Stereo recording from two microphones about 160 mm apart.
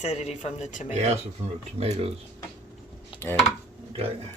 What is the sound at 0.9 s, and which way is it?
Speech, 45° right (ahead or behind).